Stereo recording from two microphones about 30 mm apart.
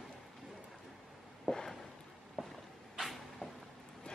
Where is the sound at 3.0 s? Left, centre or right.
Centre.